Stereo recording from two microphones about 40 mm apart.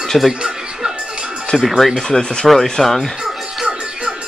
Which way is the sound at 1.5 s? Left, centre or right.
Centre.